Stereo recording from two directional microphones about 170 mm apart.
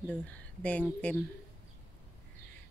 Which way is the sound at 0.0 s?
10° left (ahead or behind).